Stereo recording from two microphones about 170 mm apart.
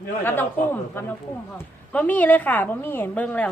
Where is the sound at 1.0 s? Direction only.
10° left (ahead or behind).